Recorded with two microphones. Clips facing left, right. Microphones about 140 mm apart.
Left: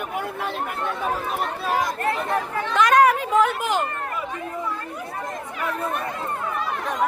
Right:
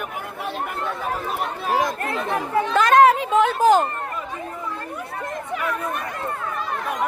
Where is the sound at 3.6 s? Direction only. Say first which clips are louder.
Right 8 dB; 40° right (ahead or behind).